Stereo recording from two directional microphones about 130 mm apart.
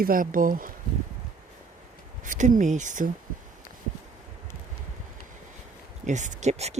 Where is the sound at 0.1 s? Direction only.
90° right.